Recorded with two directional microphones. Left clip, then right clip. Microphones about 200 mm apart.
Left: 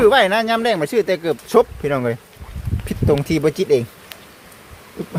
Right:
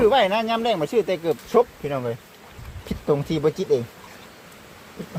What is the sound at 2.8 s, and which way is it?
Speech, 25° left (ahead or behind).